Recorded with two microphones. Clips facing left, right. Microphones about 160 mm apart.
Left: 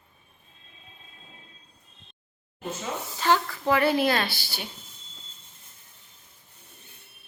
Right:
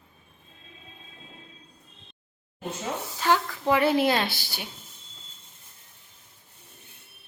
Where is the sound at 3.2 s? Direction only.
10° right (ahead or behind).